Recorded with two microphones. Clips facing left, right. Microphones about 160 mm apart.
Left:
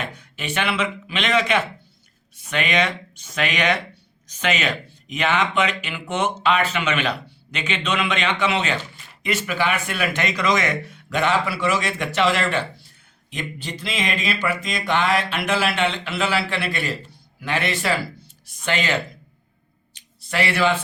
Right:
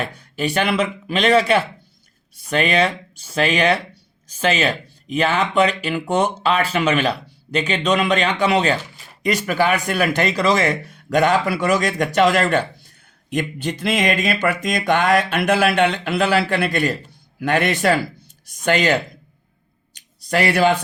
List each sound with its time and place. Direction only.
0.2 s speech: 35° right (ahead or behind)
20.3 s speech: 40° right (ahead or behind)